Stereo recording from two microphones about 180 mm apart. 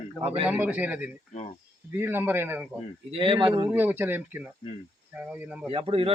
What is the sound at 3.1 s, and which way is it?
Speech, 30° right (ahead or behind).